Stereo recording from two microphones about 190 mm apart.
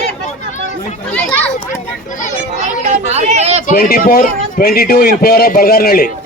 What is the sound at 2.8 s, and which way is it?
Speech, 35° right (ahead or behind).